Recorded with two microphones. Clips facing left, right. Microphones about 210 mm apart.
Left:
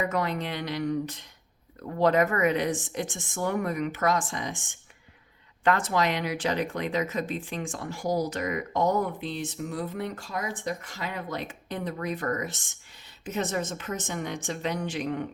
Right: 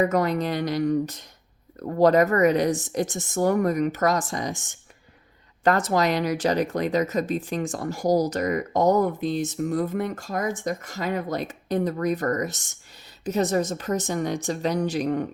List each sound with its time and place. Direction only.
0.0 s speech: 40° right (ahead or behind)